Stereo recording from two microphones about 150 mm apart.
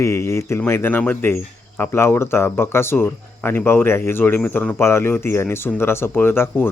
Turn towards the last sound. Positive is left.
turn(degrees=15)  # may be behind; listen again after turning